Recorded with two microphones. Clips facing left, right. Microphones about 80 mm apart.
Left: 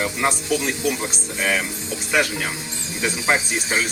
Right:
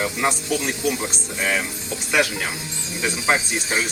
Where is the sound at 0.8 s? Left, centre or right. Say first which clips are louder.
Even; centre.